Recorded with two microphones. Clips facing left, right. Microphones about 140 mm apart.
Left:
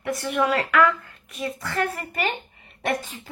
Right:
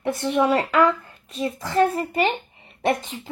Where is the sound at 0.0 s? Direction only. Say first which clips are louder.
Right 3 dB; 30° right (ahead or behind).